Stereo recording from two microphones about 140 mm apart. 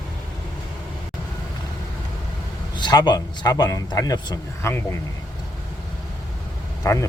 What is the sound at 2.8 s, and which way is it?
A man's voice, 30° left (ahead or behind).